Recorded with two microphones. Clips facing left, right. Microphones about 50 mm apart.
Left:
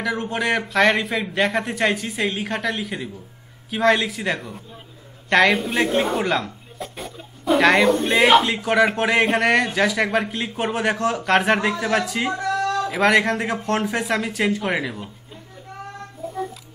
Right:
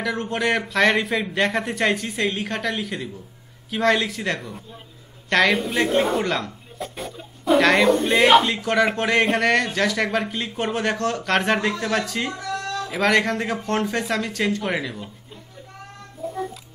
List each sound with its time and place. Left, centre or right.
0.0 s speech: centre
12.4 s a sound: left
12.9 s speech: centre
16.2 s music: centre